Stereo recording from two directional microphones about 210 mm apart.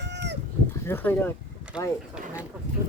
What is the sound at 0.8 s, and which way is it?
Speech, 10° left (ahead or behind).